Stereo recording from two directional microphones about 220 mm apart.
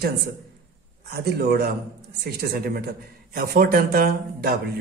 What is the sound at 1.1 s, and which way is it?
A man's voice, 45° right (ahead or behind).